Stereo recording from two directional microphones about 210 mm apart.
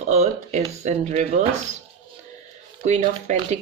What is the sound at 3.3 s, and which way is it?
Speech, 35° right (ahead or behind).